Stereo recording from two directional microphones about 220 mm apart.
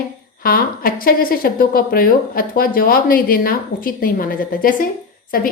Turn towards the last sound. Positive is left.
turn(degrees=40)  # may be behind; listen again after turning